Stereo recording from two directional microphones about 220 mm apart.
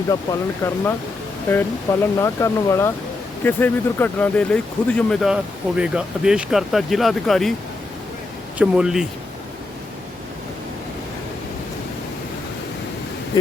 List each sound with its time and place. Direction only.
0.6 s speech: 10° left (ahead or behind)
8.5 s speech: 5° right (ahead or behind)
13.3 s a sound: 20° left (ahead or behind)